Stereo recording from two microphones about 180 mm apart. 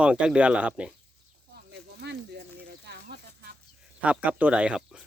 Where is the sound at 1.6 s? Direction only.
65° right (ahead or behind).